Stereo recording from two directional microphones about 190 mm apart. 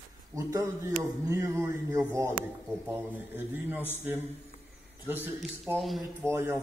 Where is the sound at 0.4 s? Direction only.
20° right (ahead or behind).